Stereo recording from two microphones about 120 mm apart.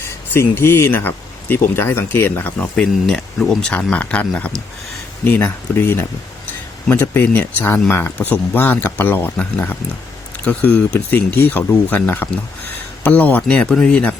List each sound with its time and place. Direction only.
0.3 s speech: 20° left (ahead or behind)
2.9 s speech: 5° left (ahead or behind)